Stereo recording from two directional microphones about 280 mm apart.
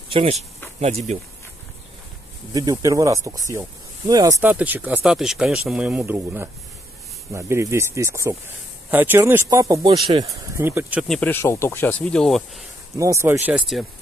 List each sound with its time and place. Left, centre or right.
0.1 s speech: right
2.5 s speech: centre
12.9 s speech: centre